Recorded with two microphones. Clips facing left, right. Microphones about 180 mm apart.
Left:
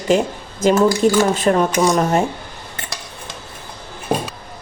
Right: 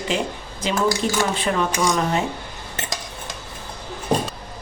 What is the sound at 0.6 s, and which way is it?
Speech, 45° left (ahead or behind).